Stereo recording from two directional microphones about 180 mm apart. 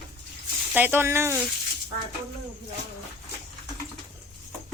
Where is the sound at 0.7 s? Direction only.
10° right (ahead or behind).